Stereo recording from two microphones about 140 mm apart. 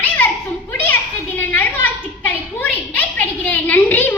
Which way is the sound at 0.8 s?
15° left (ahead or behind).